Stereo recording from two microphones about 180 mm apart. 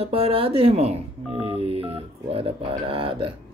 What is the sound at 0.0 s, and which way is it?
Speech, 30° right (ahead or behind).